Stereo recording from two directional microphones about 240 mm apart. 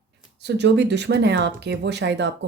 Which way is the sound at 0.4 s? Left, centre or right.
Right.